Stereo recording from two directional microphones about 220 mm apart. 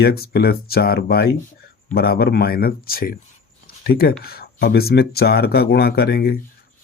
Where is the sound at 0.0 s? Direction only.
45° left (ahead or behind).